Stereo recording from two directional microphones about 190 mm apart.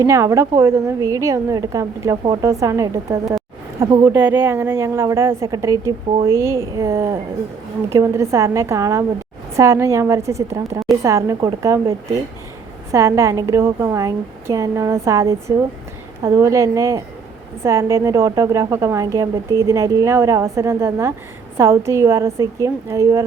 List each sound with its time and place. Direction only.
0.0 s a woman's voice: 15° right (ahead or behind)